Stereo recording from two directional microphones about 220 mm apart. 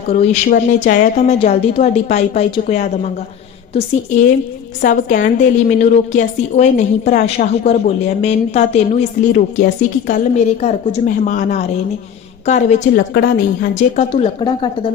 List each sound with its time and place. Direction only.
0.1 s a woman's voice: 30° left (ahead or behind)
4.8 s a woman's voice: 35° left (ahead or behind)
13.0 s a woman's voice: 50° left (ahead or behind); by 14.9 s 20° left (ahead or behind)